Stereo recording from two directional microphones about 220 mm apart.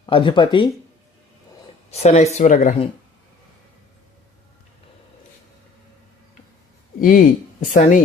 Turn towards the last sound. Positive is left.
turn(degrees=35)  # may be behind; listen again after turning